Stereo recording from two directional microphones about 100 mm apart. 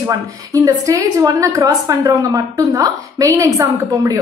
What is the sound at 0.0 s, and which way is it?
A woman's voice, 35° right (ahead or behind).